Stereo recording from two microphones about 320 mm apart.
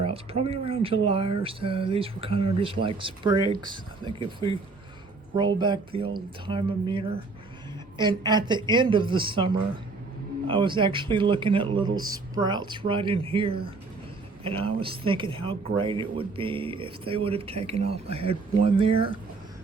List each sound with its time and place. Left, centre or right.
0.0 s speech: centre